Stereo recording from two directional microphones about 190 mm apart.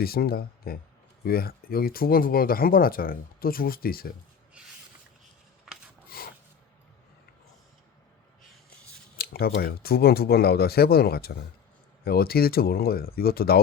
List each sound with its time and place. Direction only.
0.0 s speech: 50° left (ahead or behind)
6.1 s rub: 50° left (ahead or behind)
9.1 s speech: 55° left (ahead or behind)